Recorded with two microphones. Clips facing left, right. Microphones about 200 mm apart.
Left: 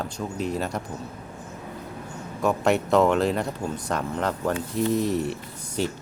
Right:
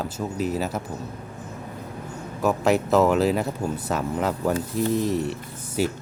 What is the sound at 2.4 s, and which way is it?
Speech, centre (ahead or behind).